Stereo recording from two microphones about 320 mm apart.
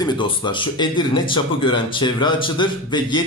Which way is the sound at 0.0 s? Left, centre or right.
Centre.